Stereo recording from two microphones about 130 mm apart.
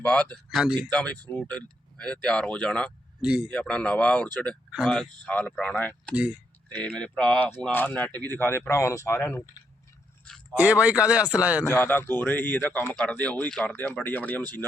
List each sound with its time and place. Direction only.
0.0 s speech: 10° left (ahead or behind)
0.5 s speech: 5° right (ahead or behind)
0.8 s speech: 10° left (ahead or behind)
3.2 s a man's voice: 10° right (ahead or behind)
3.5 s speech: 10° left (ahead or behind)
10.6 s a man's voice: 10° right (ahead or behind)
11.6 s speech: 15° left (ahead or behind)